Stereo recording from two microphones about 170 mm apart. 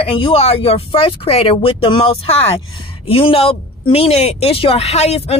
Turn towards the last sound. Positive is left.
turn(degrees=40)  # may be behind; listen again after turning